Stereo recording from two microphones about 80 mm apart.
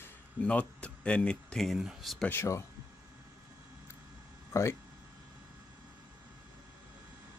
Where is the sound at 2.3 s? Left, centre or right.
Left.